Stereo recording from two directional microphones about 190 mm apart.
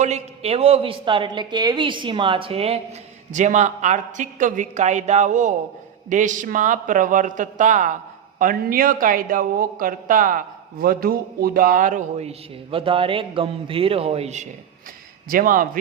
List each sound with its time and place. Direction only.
0.0 s a woman's voice: 35° right (ahead or behind)
15.3 s a man's voice: 45° right (ahead or behind)